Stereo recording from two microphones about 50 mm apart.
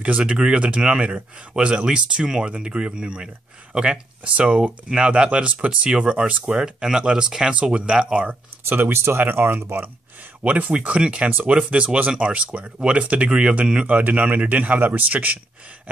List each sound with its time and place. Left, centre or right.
0.0 s speech: right
8.6 s speech: right
10.4 s speech: right
13.8 s speech: right